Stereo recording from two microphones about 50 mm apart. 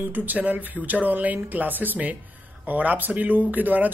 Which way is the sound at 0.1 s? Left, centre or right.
Right.